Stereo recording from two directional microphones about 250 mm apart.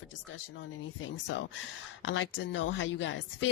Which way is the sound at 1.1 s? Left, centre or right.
Left.